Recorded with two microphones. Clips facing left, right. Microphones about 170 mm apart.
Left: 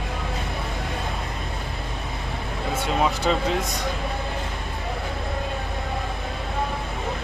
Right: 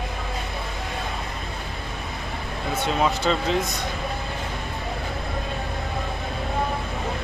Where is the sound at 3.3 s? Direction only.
5° left (ahead or behind).